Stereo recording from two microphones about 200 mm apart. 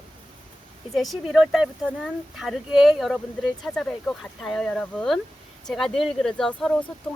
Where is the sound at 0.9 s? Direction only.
Centre (ahead or behind).